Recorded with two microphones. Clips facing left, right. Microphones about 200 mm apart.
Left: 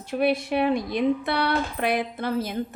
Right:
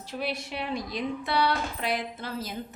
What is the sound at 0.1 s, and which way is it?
A woman's voice, 55° left (ahead or behind).